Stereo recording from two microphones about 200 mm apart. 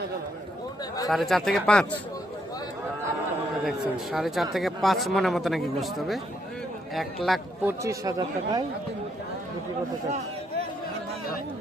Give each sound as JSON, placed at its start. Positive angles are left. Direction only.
{"t": 1.1, "sound": "speech", "side_deg": 0}
{"t": 3.6, "sound": "speech", "side_deg": -5}
{"t": 7.3, "sound": "speech", "side_deg": 0}
{"t": 7.7, "sound": "speech", "side_deg": -15}